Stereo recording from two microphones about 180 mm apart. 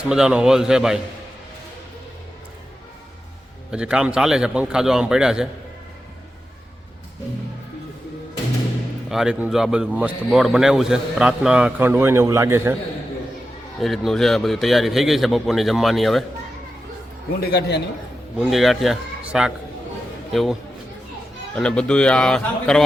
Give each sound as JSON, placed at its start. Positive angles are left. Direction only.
{"t": 0.1, "sound": "a man's voice", "side_deg": -5}
{"t": 3.7, "sound": "a man's voice", "side_deg": -5}
{"t": 9.0, "sound": "a man's voice", "side_deg": -5}
{"t": 13.7, "sound": "a man's voice", "side_deg": 0}
{"t": 17.4, "sound": "a man's voice", "side_deg": 70}
{"t": 18.3, "sound": "a man's voice", "side_deg": 0}